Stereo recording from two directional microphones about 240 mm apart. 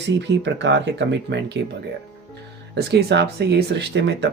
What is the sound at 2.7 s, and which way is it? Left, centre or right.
Speech, right.